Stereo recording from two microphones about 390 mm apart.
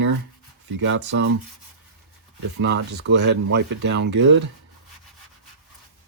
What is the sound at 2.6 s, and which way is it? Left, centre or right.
Speech, right.